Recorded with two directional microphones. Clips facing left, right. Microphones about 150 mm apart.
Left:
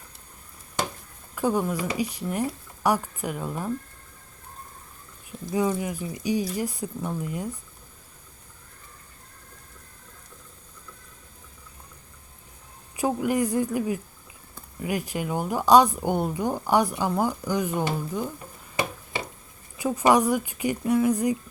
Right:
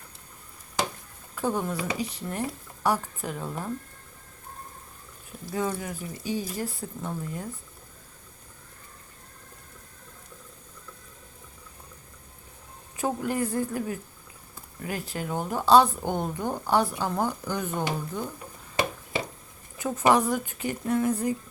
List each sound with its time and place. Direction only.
1.4 s a woman's voice: 10° left (ahead or behind)
5.5 s a woman's voice: 10° left (ahead or behind)
13.0 s a woman's voice: 10° left (ahead or behind)
19.8 s a woman's voice: 10° left (ahead or behind)